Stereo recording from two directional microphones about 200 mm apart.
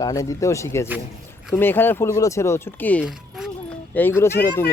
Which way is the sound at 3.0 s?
Centre (ahead or behind).